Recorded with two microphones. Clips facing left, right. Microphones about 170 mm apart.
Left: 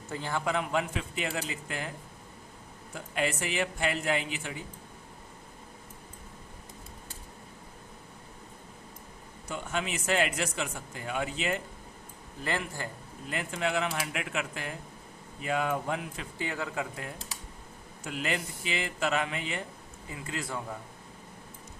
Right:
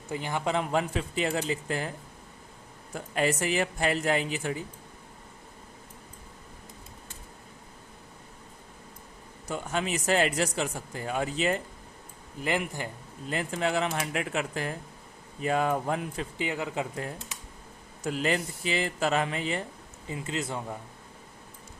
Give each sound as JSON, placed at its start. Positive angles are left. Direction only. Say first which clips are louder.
{"t": 0.1, "sound": "a man's voice", "louder": "right 2 dB", "side_deg": -15}
{"t": 0.5, "sound": "speech", "louder": "right 3 dB", "side_deg": -35}
{"t": 2.9, "sound": "speech", "louder": "right 4 dB", "side_deg": -40}
{"t": 9.5, "sound": "speech", "louder": "right 3 dB", "side_deg": -40}
{"t": 12.4, "sound": "a man's voice", "louder": "right 4 dB", "side_deg": -15}
{"t": 13.3, "sound": "speech", "louder": "right 3 dB", "side_deg": -35}
{"t": 16.4, "sound": "a man's voice", "louder": "right 2 dB", "side_deg": -15}
{"t": 18.0, "sound": "speech", "louder": "right 5 dB", "side_deg": -35}
{"t": 20.1, "sound": "speech", "louder": "right 4 dB", "side_deg": -25}